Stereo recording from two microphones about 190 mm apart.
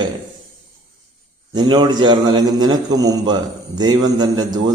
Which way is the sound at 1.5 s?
20° right (ahead or behind).